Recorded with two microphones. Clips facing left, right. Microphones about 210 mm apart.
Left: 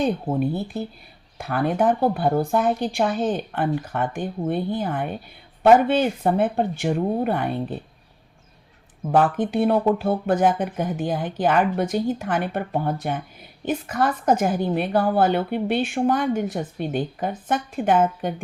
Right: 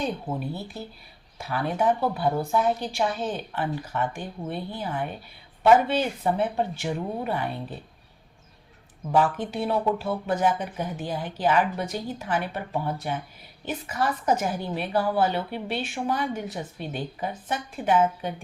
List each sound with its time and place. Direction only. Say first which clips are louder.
0.3 s a woman's voice: left 8 dB; 55° left (ahead or behind)
9.1 s a woman's voice: left 4 dB; 55° left (ahead or behind)